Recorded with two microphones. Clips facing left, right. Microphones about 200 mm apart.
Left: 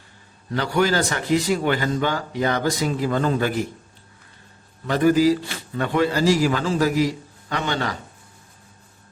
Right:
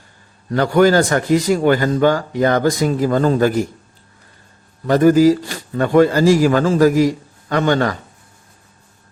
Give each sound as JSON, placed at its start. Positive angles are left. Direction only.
{"t": 0.5, "sound": "a man's voice", "side_deg": -50}
{"t": 4.9, "sound": "a man's voice", "side_deg": -45}